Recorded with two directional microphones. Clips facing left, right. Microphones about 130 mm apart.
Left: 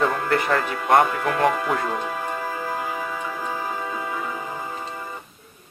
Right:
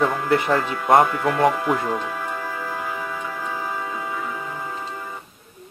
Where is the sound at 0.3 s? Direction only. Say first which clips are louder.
Right 2 dB; 20° right (ahead or behind).